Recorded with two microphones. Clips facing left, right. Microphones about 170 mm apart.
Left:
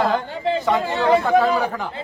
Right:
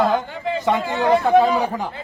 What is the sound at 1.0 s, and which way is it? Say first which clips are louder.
Speech: right 1 dB; 20° right (ahead or behind).